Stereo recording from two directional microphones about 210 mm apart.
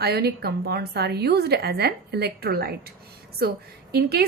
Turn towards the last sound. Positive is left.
turn(degrees=-50)  # may be behind; listen again after turning